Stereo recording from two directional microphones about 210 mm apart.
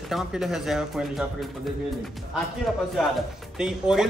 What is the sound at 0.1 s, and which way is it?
Speech, centre (ahead or behind).